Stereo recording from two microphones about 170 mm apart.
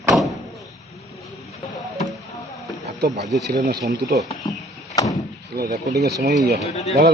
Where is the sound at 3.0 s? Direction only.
70° right (ahead or behind).